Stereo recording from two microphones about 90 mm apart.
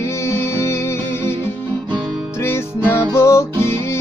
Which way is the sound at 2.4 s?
25° left (ahead or behind).